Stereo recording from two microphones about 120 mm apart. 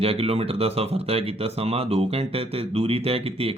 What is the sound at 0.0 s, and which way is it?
Speech, 55° right (ahead or behind).